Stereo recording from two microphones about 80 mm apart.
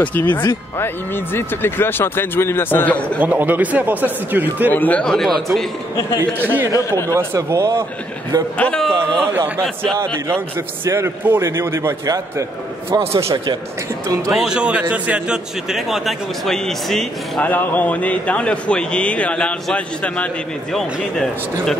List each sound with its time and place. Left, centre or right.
0.0 s speech: left
3.2 s speech: right
4.6 s speech: left
5.0 s speech: centre
6.7 s speech: left
7.3 s a man's voice: right
8.5 s a man's voice: centre
11.2 s a man's voice: right
12.9 s a man's voice: right
14.3 s a man's voice: centre
17.4 s a man's voice: left; by 21.7 s centre